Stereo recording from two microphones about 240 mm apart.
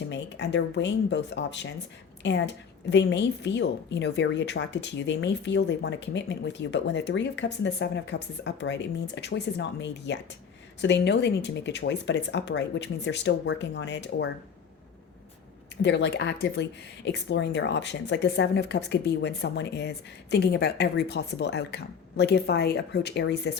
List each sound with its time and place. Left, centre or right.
0.1 s a woman's voice: left
15.8 s a woman's voice: left